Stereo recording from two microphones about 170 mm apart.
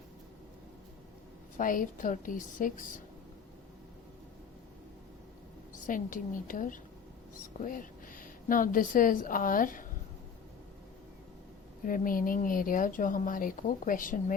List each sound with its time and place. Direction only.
1.5 s speech: 50° left (ahead or behind)
5.8 s a woman's voice: 50° left (ahead or behind)
11.9 s speech: 55° left (ahead or behind)